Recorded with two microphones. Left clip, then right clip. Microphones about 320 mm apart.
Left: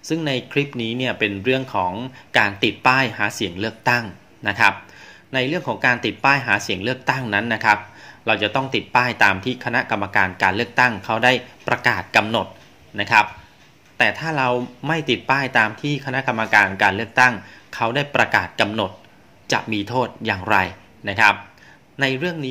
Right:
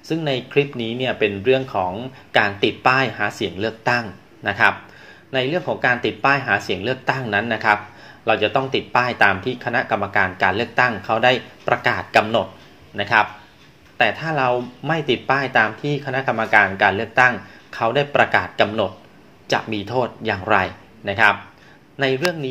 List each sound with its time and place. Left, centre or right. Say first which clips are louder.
0.0 s speech: even; left